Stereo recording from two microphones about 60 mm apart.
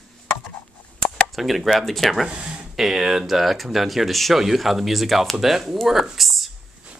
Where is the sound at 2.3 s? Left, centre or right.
Centre.